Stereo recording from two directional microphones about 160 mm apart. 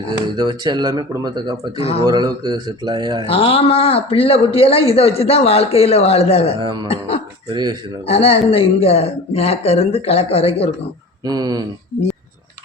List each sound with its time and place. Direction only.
0.3 s speech: 30° right (ahead or behind)
3.2 s speech: 35° left (ahead or behind)
6.6 s speech: 30° right (ahead or behind)
6.8 s speech: 40° left (ahead or behind)
7.5 s speech: 30° right (ahead or behind)
8.0 s speech: 35° left (ahead or behind)
11.3 s speech: 25° right (ahead or behind)